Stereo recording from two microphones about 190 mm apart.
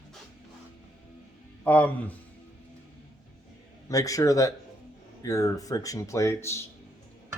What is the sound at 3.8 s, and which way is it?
Speech, 15° left (ahead or behind).